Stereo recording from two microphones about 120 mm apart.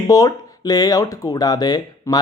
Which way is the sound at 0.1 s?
30° left (ahead or behind).